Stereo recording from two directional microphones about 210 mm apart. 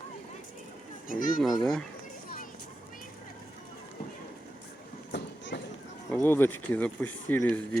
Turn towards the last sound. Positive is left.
turn(degrees=5)  # may be behind; listen again after turning